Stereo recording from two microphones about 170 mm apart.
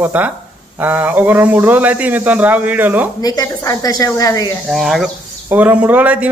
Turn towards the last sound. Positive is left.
turn(degrees=-10)  # may be behind; listen again after turning